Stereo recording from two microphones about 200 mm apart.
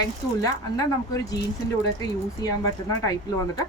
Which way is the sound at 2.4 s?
20° left (ahead or behind).